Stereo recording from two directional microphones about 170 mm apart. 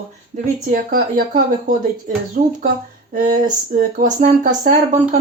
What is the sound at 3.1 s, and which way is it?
Speech, 55° right (ahead or behind).